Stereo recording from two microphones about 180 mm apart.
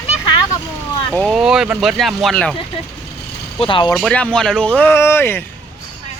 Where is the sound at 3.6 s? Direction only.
30° left (ahead or behind).